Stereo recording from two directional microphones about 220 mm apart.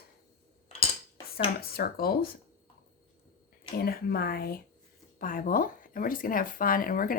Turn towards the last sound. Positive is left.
turn(degrees=40)  # may be behind; listen again after turning